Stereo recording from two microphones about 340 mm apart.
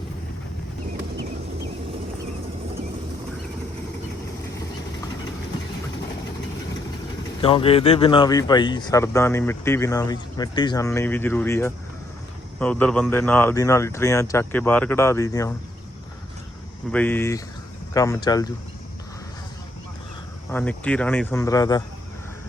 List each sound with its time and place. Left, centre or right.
7.4 s speech: centre
16.9 s speech: centre
20.5 s speech: centre